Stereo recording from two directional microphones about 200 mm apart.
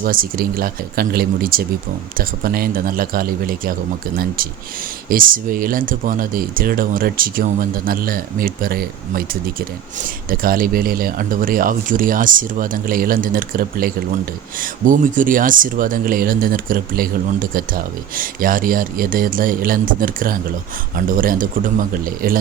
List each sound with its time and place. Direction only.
0.0 s speech: 45° right (ahead or behind)
5.0 s speech: 45° right (ahead or behind)